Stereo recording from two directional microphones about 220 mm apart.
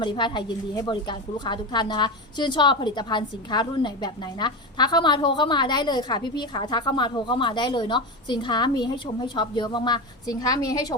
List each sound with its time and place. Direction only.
0.0 s a woman's voice: 20° left (ahead or behind)